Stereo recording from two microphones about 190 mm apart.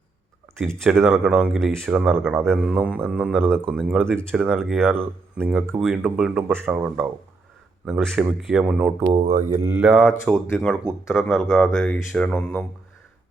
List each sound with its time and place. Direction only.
0.8 s speech: centre (ahead or behind)
4.4 s speech: 10° right (ahead or behind)
7.9 s speech: centre (ahead or behind)
9.1 s mantra: 35° right (ahead or behind)
9.6 s speech: 10° right (ahead or behind); by 12.6 s 5° left (ahead or behind)